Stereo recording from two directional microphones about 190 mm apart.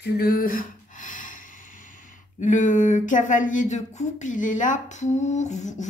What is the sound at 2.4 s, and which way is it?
A woman's voice, 40° left (ahead or behind).